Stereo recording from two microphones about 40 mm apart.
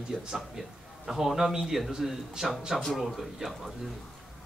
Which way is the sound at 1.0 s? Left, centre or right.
Centre.